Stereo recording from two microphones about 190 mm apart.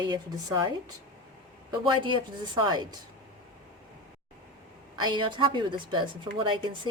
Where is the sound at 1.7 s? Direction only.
25° right (ahead or behind).